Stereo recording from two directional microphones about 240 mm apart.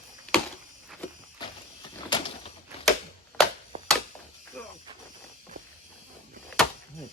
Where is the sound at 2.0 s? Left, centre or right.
Left.